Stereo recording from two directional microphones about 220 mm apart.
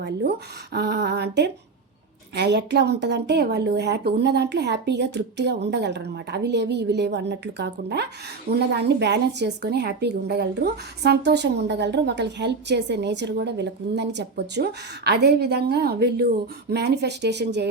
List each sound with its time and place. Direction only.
0.7 s a woman's voice: 45° right (ahead or behind)